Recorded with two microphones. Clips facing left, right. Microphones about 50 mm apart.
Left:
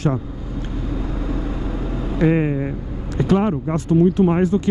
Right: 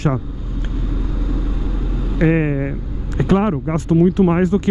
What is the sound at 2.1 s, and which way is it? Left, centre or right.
Speech, right.